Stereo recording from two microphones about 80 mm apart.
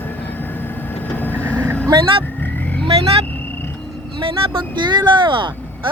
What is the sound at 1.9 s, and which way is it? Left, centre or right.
Speech, right.